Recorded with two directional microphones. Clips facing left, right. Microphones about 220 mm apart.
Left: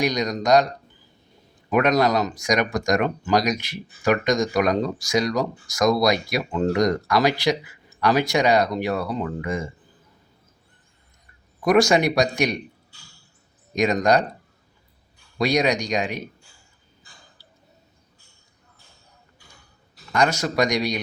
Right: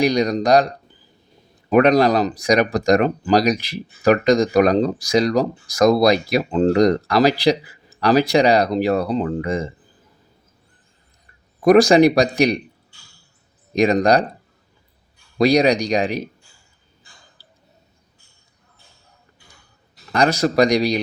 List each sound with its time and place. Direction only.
0.0 s speech: 30° right (ahead or behind)
1.7 s speech: 30° right (ahead or behind)
11.8 s speech: 35° right (ahead or behind)
13.7 s speech: 30° right (ahead or behind)
15.4 s speech: 35° right (ahead or behind)
20.1 s speech: 35° right (ahead or behind)